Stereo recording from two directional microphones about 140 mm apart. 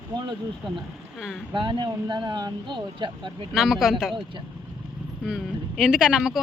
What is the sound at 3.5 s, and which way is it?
Speech, 5° right (ahead or behind).